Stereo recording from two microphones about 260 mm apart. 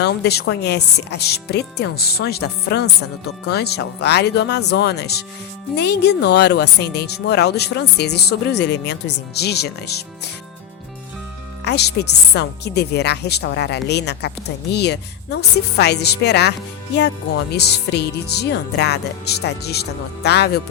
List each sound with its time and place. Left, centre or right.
0.0 s a woman's voice: left
11.6 s a woman's voice: left